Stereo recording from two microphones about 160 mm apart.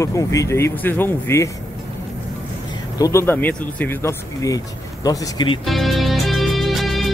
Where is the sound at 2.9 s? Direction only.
20° left (ahead or behind).